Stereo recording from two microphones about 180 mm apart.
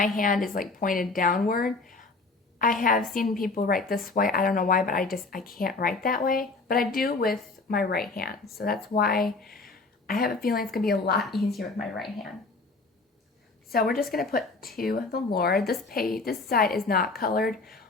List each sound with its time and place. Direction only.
0.0 s speech: 50° left (ahead or behind)
3.2 s a woman's voice: 50° left (ahead or behind)
9.2 s a woman's voice: centre (ahead or behind)
9.6 s a woman's voice: 55° left (ahead or behind)
11.2 s a woman's voice: centre (ahead or behind)
13.7 s a woman's voice: 55° left (ahead or behind)